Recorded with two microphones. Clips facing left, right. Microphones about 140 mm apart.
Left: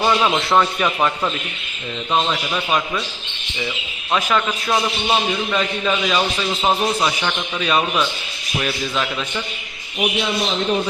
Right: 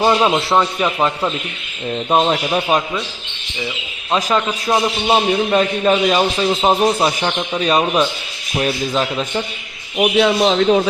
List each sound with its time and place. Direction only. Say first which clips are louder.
0.0 s a man's voice: right 3 dB; 25° right (ahead or behind)
2.0 s a man's voice: right 5 dB; 40° right (ahead or behind)
4.1 s a man's voice: right 2 dB; 25° right (ahead or behind)
10.0 s a man's voice: right 8 dB; 75° right (ahead or behind); by 10.8 s 90° right